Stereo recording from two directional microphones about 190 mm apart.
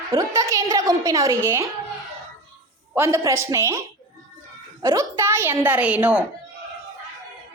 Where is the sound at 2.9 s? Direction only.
15° right (ahead or behind).